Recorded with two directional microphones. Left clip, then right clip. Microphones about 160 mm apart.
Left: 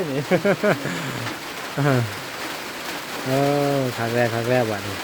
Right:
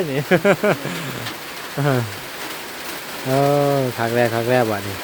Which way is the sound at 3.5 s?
30° right (ahead or behind).